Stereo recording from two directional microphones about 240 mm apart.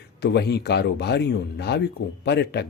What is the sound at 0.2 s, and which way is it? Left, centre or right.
Speech, left.